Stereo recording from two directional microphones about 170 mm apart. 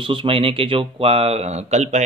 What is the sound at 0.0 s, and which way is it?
Speech, 30° right (ahead or behind).